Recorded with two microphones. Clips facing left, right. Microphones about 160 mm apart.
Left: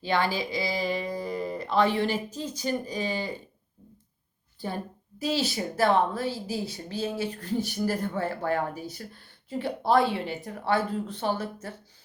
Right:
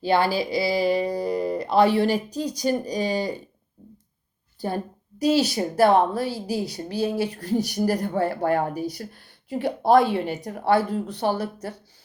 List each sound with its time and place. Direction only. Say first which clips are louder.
0.0 s speech: right 5 dB; 35° right (ahead or behind)
5.2 s speech: right 7 dB; 40° right (ahead or behind)